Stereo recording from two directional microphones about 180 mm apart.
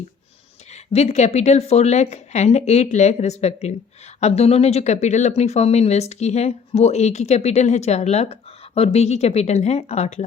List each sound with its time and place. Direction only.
0.7 s speech: 35° left (ahead or behind)